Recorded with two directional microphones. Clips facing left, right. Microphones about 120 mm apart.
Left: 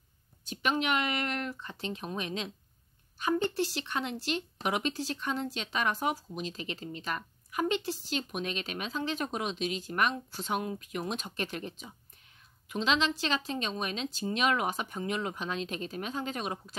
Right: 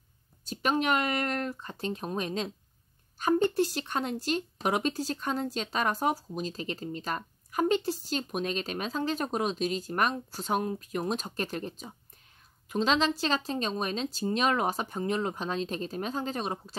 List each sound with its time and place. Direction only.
0.5 s speech: 40° right (ahead or behind)